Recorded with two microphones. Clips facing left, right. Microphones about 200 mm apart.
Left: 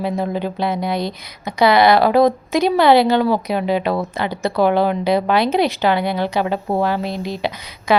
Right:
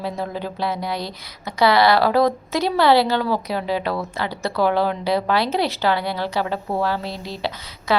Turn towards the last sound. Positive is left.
turn(degrees=15)  # may be behind; listen again after turning